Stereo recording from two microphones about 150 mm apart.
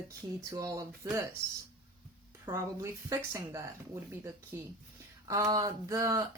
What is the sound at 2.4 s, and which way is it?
Speech, 20° right (ahead or behind).